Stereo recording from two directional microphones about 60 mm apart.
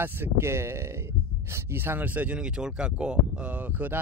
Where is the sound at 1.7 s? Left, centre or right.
Right.